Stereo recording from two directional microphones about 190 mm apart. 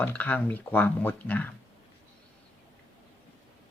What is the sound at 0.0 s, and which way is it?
Speech, 10° left (ahead or behind).